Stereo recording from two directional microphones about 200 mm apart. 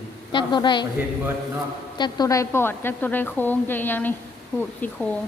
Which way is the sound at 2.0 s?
20° left (ahead or behind).